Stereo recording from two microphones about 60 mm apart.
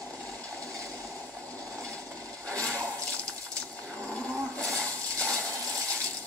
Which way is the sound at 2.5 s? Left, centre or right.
Centre.